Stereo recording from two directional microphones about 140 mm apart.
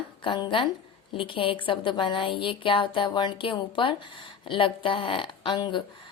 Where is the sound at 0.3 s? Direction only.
35° left (ahead or behind).